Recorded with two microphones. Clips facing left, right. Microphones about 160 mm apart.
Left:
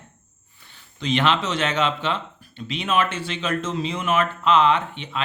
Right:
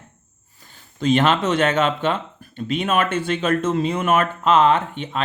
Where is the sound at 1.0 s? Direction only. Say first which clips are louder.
Right 4 dB; 45° right (ahead or behind).